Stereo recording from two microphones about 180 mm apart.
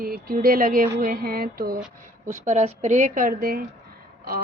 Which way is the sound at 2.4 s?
40° right (ahead or behind).